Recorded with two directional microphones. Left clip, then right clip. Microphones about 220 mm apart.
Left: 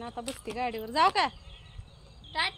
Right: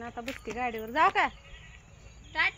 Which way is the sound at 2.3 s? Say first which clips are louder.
Right 2 dB; centre (ahead or behind).